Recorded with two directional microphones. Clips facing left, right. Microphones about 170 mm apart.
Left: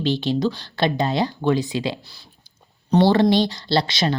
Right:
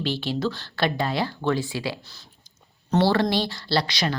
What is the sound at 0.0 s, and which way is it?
Speech, 20° left (ahead or behind).